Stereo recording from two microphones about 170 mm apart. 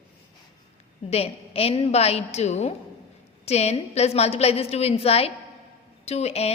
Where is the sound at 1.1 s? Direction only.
35° left (ahead or behind).